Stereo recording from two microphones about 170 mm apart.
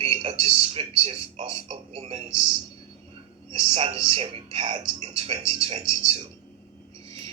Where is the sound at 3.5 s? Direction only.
30° right (ahead or behind).